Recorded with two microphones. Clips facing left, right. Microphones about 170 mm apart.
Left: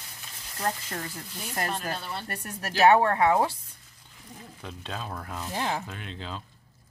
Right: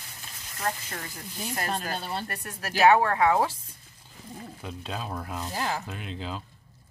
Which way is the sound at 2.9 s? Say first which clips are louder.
Left 1 dB; 25° left (ahead or behind).